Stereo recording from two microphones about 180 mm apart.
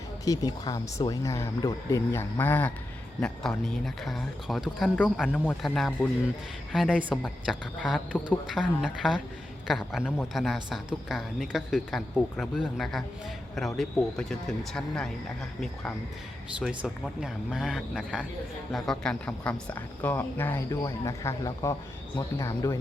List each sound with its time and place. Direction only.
0.3 s speech: 20° left (ahead or behind); by 15.1 s 5° left (ahead or behind)
16.6 s speech: centre (ahead or behind); by 22.8 s 15° left (ahead or behind)